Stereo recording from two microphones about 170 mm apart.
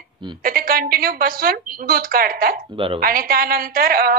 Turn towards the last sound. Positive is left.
turn(degrees=-60)  # may be behind; listen again after turning